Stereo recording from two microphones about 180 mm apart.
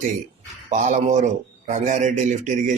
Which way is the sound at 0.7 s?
45° right (ahead or behind).